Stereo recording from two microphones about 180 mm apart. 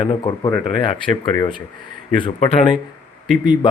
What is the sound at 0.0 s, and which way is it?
Speech, 30° left (ahead or behind).